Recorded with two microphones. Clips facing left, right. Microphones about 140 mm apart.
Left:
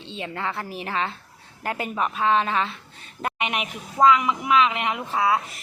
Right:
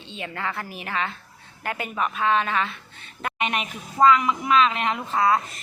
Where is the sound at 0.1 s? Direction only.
30° left (ahead or behind).